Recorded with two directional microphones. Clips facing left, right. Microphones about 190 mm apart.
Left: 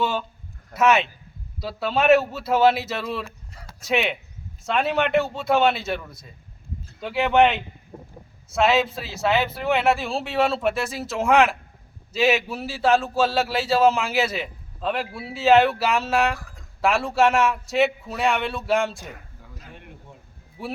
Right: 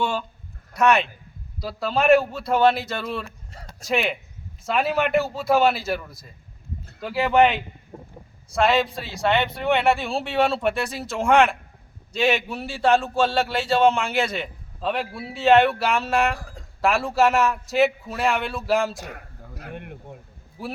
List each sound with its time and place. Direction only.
0.0 s a man's voice: centre (ahead or behind)
18.9 s a sound: 65° right (ahead or behind)
20.6 s speech: centre (ahead or behind)